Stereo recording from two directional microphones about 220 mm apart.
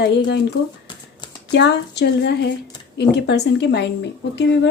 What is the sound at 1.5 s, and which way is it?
A woman's voice, 50° left (ahead or behind).